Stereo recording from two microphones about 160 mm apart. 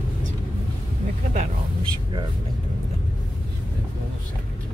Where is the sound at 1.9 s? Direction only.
25° right (ahead or behind).